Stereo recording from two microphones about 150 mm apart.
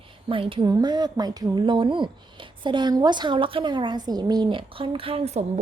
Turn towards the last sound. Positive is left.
turn(degrees=-45)  # may be behind; listen again after turning